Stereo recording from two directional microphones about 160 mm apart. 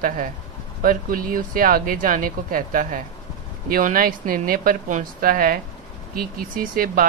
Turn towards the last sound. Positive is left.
turn(degrees=-60)  # may be behind; listen again after turning